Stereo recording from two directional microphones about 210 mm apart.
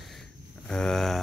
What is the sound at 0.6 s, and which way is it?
Speech, 5° left (ahead or behind).